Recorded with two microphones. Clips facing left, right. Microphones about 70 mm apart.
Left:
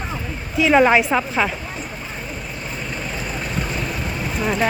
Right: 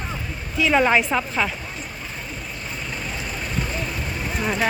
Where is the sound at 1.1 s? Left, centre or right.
Left.